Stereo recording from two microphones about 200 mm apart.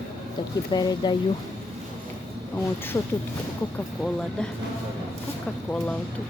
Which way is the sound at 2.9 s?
10° left (ahead or behind).